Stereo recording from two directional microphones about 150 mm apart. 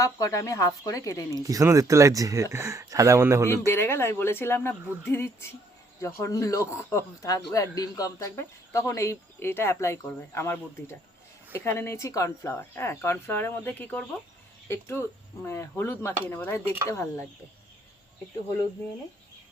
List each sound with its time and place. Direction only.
0.0 s speech: 20° left (ahead or behind)
1.4 s speech: 25° right (ahead or behind)
3.7 s speech: 15° left (ahead or behind)